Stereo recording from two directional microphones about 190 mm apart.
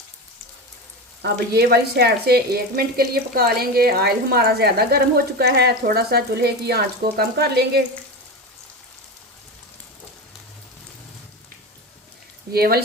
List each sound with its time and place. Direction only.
1.2 s speech: 60° right (ahead or behind)
12.5 s speech: 55° right (ahead or behind)